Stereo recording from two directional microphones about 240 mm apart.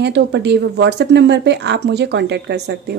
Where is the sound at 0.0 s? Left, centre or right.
Right.